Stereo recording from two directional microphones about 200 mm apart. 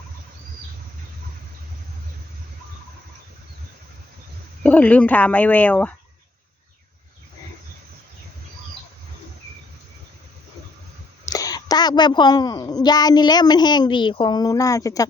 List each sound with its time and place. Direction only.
4.6 s speech: 5° left (ahead or behind)
11.3 s a woman's voice: 20° left (ahead or behind)